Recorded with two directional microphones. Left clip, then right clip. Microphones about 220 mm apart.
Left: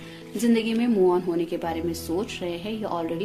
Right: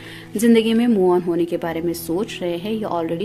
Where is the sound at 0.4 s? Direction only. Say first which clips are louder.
Right 8 dB; 40° right (ahead or behind).